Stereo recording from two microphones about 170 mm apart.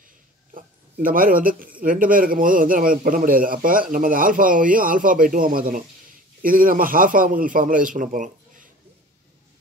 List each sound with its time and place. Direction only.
0.6 s speech: 55° right (ahead or behind)